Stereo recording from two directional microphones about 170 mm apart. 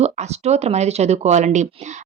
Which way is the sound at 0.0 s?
40° right (ahead or behind).